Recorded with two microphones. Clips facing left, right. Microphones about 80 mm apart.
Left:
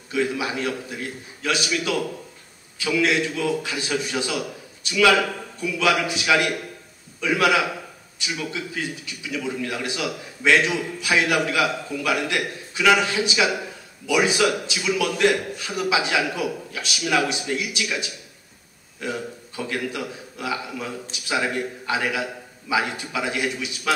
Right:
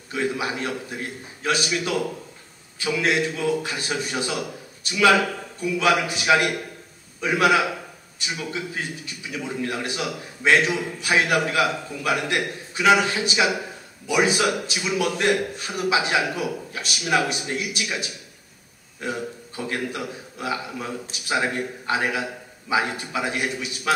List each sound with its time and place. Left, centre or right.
0.1 s a man's voice: right
14.0 s a man's voice: right